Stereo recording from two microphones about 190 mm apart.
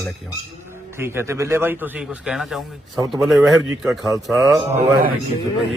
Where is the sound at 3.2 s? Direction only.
Centre (ahead or behind).